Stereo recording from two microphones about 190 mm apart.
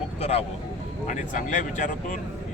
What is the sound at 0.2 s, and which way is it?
Speech, 35° left (ahead or behind).